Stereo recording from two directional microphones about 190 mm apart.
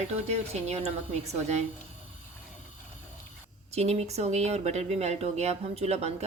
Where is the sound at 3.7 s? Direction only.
35° right (ahead or behind).